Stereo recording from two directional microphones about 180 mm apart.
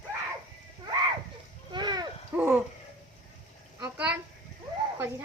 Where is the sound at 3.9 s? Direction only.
10° right (ahead or behind).